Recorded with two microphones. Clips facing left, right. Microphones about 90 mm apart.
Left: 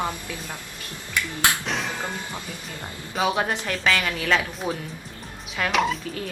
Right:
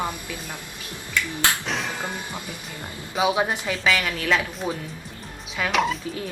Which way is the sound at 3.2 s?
10° right (ahead or behind).